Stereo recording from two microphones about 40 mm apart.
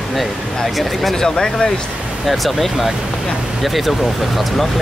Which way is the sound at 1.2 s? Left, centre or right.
Centre.